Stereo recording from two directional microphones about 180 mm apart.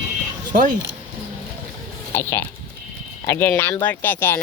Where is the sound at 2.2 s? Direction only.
15° left (ahead or behind).